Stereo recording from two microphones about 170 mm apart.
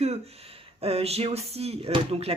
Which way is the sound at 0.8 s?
35° right (ahead or behind).